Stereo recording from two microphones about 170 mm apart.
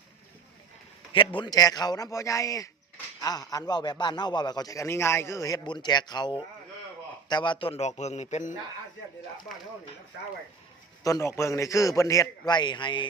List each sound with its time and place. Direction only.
1.4 s a man's voice: 20° left (ahead or behind); by 8.5 s 45° left (ahead or behind)
11.0 s a man's voice: 20° left (ahead or behind)